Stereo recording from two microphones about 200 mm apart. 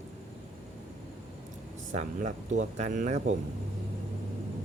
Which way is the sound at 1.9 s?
35° right (ahead or behind).